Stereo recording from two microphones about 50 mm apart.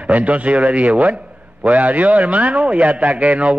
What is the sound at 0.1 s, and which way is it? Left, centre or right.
A man's voice, right.